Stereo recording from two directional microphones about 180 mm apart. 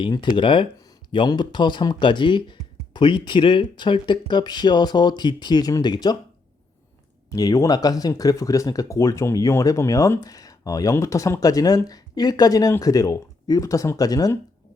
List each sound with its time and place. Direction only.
0.0 s speech: 25° left (ahead or behind)
7.3 s speech: 20° left (ahead or behind)